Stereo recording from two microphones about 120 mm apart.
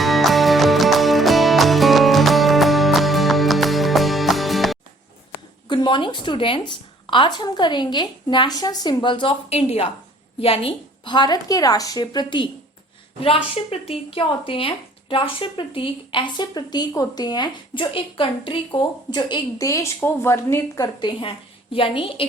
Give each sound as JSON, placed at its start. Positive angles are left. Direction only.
{"t": 0.0, "sound": "music", "side_deg": 0}
{"t": 5.6, "sound": "speech", "side_deg": 40}
{"t": 13.1, "sound": "speech", "side_deg": 50}